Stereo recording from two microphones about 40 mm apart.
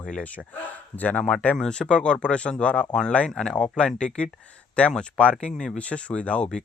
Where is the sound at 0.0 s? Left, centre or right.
Left.